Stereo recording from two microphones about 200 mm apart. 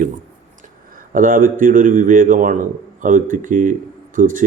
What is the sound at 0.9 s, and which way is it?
Speech, 45° right (ahead or behind).